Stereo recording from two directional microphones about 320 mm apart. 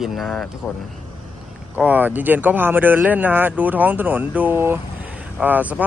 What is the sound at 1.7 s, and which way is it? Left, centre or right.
Speech, centre.